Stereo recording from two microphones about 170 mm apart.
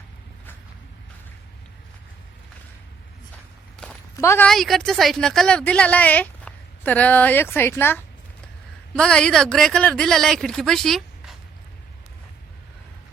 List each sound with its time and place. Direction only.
3.8 s a sound: 5° left (ahead or behind)
4.2 s a woman's voice: 15° left (ahead or behind)
4.4 s a woman's voice: centre (ahead or behind)